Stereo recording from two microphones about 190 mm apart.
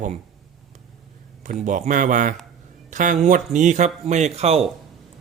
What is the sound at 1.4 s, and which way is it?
Speech, 40° right (ahead or behind).